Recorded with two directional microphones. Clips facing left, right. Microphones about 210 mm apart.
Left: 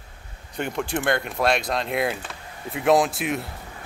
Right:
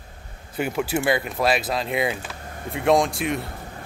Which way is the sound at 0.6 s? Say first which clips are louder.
Right 3 dB; 5° right (ahead or behind).